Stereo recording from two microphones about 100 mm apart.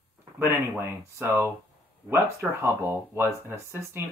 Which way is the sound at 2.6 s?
25° right (ahead or behind).